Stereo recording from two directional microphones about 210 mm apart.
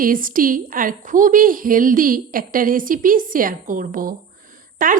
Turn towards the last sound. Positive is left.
turn(degrees=-40)  # may be behind; listen again after turning